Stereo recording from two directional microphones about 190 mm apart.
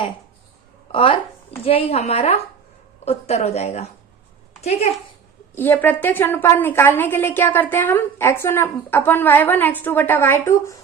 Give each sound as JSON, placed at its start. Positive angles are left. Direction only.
{"t": 0.9, "sound": "a woman's voice", "side_deg": 30}
{"t": 5.5, "sound": "a woman's voice", "side_deg": 10}